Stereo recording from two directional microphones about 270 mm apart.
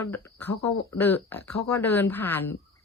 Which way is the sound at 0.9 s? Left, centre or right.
Centre.